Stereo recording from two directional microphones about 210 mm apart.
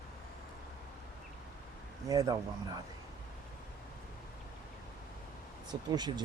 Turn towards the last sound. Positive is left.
turn(degrees=-20)  # may be behind; listen again after turning